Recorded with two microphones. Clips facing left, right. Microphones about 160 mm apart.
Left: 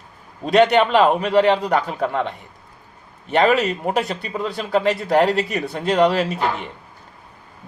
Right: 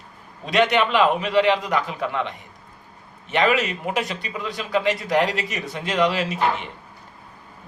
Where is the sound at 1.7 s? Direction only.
50° left (ahead or behind).